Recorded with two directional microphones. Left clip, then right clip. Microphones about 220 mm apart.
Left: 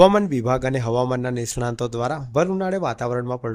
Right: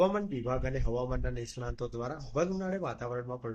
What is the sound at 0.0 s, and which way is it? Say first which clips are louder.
Speech: left 14 dB; 50° left (ahead or behind).